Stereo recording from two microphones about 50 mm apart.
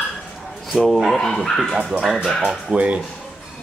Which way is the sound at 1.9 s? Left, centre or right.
Centre.